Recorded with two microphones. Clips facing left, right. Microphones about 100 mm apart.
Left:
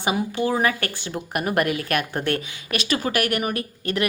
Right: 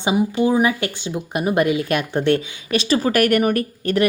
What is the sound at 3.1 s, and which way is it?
Speech, 40° right (ahead or behind).